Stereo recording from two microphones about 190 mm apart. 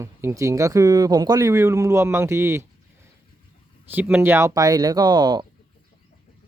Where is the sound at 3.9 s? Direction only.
10° right (ahead or behind).